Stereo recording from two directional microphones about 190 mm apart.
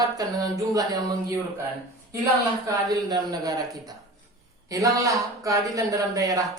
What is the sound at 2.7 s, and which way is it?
Speech, 20° right (ahead or behind).